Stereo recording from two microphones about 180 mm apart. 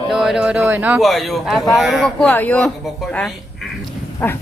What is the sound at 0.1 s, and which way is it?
Speech, centre (ahead or behind).